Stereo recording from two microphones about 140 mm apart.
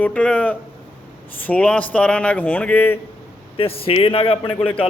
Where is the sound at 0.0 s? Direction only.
10° left (ahead or behind).